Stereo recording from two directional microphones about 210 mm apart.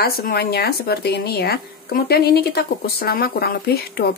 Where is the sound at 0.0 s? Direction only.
45° left (ahead or behind).